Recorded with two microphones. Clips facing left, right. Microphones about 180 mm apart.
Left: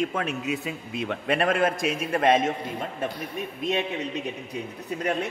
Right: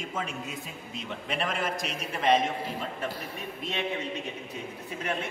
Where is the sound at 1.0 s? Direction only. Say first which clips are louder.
Left 8 dB; 60° left (ahead or behind).